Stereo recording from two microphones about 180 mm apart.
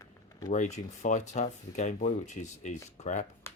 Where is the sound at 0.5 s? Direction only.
40° left (ahead or behind).